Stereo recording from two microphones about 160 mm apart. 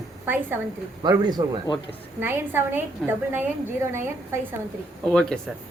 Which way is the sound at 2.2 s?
15° right (ahead or behind).